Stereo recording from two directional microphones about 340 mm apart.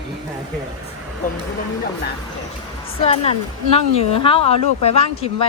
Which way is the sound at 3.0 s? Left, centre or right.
Centre.